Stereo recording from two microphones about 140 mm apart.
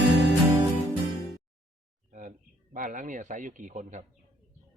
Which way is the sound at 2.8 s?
70° right (ahead or behind).